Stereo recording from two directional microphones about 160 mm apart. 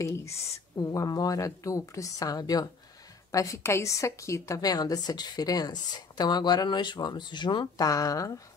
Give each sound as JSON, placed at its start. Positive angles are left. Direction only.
{"t": 0.0, "sound": "a woman's voice", "side_deg": 20}